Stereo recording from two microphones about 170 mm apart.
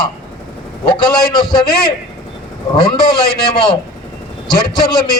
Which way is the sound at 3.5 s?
30° left (ahead or behind).